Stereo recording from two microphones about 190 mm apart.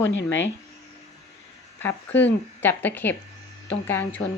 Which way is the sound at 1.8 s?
10° left (ahead or behind).